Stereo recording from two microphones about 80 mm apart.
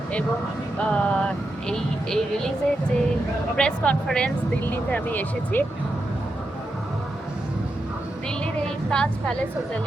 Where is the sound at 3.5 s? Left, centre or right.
Centre.